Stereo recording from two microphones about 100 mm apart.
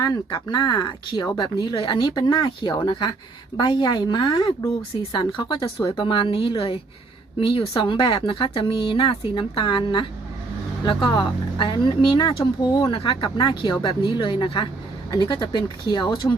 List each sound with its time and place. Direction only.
0.0 s speech: 45° left (ahead or behind)
12.9 s speech: 60° left (ahead or behind)